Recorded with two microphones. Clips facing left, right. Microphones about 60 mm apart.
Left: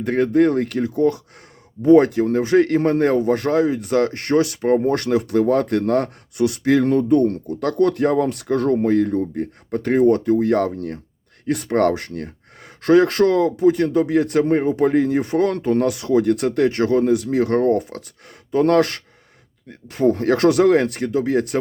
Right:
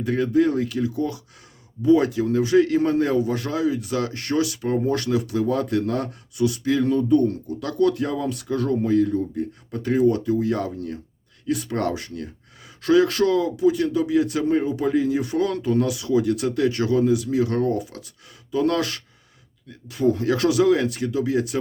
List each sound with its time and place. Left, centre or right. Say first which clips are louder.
0.0 s a man's voice: left 4 dB; left